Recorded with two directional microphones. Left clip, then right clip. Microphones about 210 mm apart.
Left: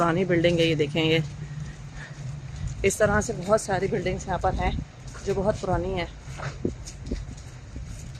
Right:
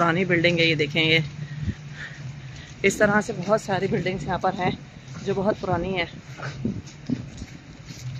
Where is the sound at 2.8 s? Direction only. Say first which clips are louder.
Right 2 dB; 15° left (ahead or behind).